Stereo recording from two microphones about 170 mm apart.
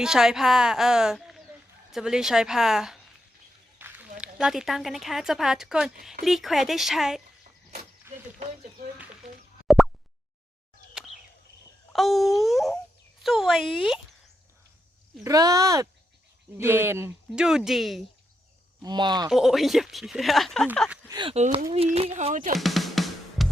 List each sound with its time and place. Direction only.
0.0 s speech: 5° right (ahead or behind)
3.8 s a sound: 10° right (ahead or behind)
4.2 s speech: 5° right (ahead or behind)
8.1 s a sound: 15° right (ahead or behind)
9.6 s plop: centre (ahead or behind)
11.9 s speech: centre (ahead or behind)
15.2 s speech: 20° right (ahead or behind); by 18.0 s centre (ahead or behind)
18.8 s speech: 25° right (ahead or behind)
19.3 s speech: centre (ahead or behind)
21.1 s speech: 25° right (ahead or behind)
21.3 s speech: 40° right (ahead or behind)
22.5 s music: centre (ahead or behind)